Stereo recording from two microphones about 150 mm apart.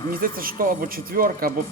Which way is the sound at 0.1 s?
75° right (ahead or behind).